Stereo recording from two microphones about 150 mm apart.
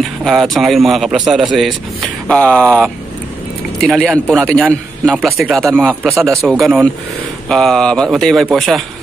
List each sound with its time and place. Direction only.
0.2 s speech: centre (ahead or behind)
6.0 s speech: 20° right (ahead or behind)
7.4 s speech: 5° left (ahead or behind)